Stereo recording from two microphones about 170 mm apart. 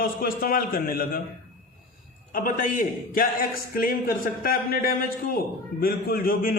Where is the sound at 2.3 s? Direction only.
50° left (ahead or behind).